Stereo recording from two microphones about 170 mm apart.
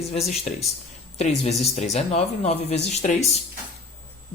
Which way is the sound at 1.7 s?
40° left (ahead or behind).